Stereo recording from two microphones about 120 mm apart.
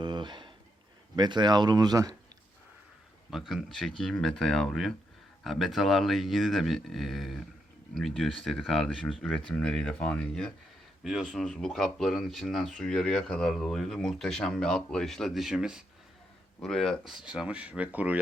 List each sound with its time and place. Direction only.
0.0 s speech: 40° right (ahead or behind)
3.2 s speech: centre (ahead or behind)
16.6 s speech: 5° left (ahead or behind); by 18.2 s 15° right (ahead or behind)